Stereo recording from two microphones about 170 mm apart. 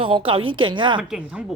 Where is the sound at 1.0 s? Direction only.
5° right (ahead or behind).